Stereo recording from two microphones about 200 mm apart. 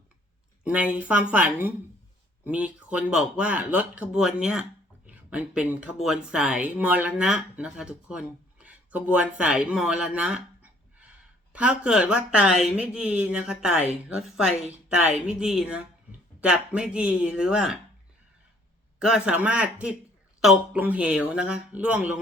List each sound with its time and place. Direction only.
0.6 s speech: 5° right (ahead or behind)
18.9 s speech: 5° right (ahead or behind)